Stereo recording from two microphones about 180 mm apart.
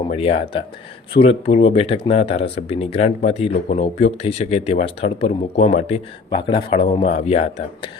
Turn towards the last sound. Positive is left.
turn(degrees=35)  # may be behind; listen again after turning